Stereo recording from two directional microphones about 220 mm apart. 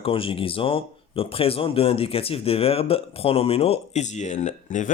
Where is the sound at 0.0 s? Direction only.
25° left (ahead or behind).